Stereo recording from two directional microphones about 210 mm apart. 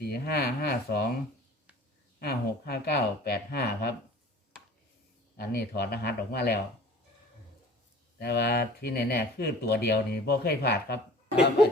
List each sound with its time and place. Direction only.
0.1 s speech: 50° left (ahead or behind)
2.1 s speech: 45° left (ahead or behind)
5.4 s speech: 50° left (ahead or behind)
8.2 s speech: 50° left (ahead or behind)